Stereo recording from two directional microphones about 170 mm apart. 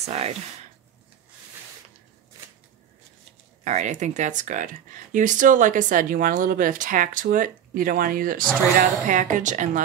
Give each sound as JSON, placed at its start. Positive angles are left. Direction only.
{"t": 0.0, "sound": "speech", "side_deg": -40}
{"t": 3.6, "sound": "speech", "side_deg": -45}